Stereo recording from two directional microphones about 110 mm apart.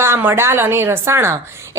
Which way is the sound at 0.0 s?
20° right (ahead or behind).